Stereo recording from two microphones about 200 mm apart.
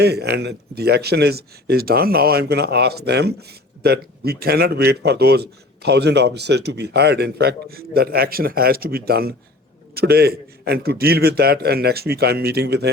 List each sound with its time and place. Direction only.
0.0 s a man's voice: 55° right (ahead or behind)